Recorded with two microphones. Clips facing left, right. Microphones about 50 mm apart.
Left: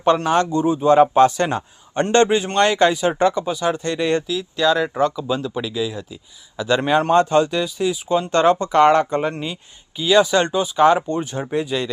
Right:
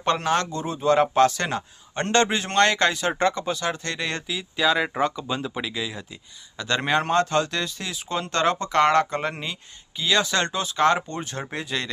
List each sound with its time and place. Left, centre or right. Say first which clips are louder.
0.3 s a man's voice: left 7 dB; centre
2.5 s speech: left 4 dB; centre
4.3 s speech: left 4 dB; centre
5.7 s speech: left 6 dB; centre
7.1 s speech: left 6 dB; centre
9.3 s speech: left 5 dB; centre